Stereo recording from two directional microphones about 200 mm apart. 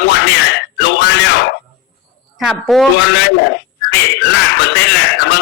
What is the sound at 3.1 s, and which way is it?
Speech, 60° left (ahead or behind).